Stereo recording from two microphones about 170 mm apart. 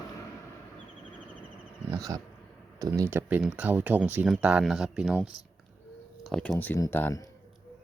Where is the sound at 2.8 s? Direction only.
20° right (ahead or behind); by 6.5 s centre (ahead or behind).